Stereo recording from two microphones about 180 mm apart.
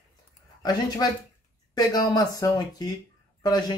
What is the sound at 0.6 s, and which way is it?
Speech, 20° left (ahead or behind).